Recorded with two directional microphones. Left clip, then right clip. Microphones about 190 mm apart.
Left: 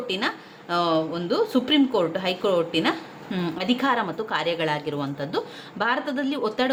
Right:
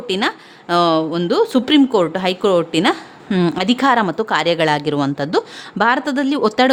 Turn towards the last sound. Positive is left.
turn(degrees=-55)  # may be behind; listen again after turning